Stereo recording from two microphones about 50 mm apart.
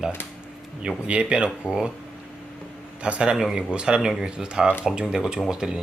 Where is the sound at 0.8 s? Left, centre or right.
Centre.